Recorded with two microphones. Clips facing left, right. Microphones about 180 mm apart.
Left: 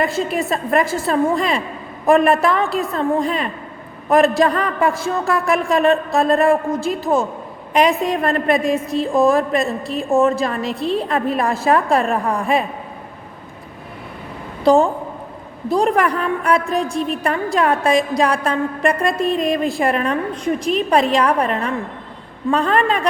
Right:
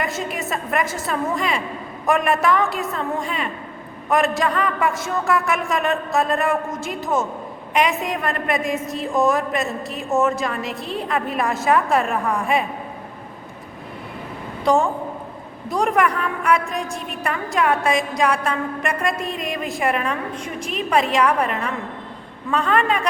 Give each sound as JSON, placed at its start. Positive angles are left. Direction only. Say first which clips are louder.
{"t": 0.0, "sound": "a woman's voice", "louder": "left 6 dB", "side_deg": 35}
{"t": 14.6, "sound": "a woman's voice", "louder": "left 5 dB", "side_deg": 35}